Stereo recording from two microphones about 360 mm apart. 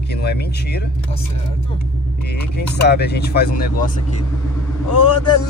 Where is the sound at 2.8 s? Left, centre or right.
Left.